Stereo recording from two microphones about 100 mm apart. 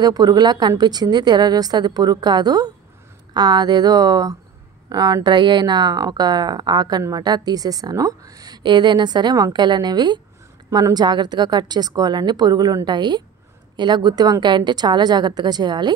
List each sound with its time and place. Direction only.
0.0 s speech: 40° right (ahead or behind)